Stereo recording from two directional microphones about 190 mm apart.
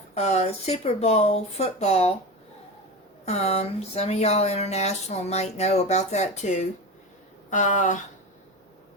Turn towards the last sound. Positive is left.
turn(degrees=40)  # may be behind; listen again after turning